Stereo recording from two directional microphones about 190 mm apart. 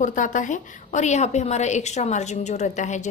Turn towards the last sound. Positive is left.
turn(degrees=40)  # may be behind; listen again after turning